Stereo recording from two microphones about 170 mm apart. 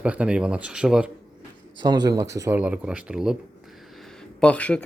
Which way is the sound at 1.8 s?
25° right (ahead or behind).